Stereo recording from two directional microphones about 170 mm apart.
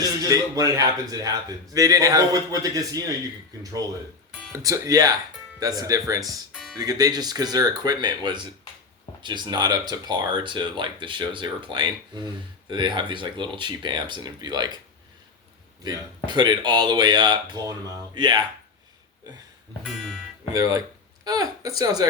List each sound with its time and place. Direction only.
0.0 s a man's voice: 20° right (ahead or behind)
4.5 s a man's voice: 20° right (ahead or behind)
6.5 s music: centre (ahead or behind)
6.7 s a man's voice: 20° right (ahead or behind)
15.8 s a man's voice: 25° right (ahead or behind)
19.8 s music: centre (ahead or behind)
20.5 s a man's voice: 20° right (ahead or behind)